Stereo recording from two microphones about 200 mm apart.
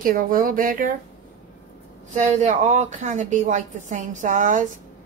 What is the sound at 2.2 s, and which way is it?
A woman's voice, 35° right (ahead or behind).